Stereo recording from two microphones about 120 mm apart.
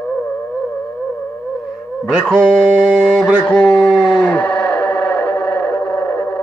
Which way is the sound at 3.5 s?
10° left (ahead or behind).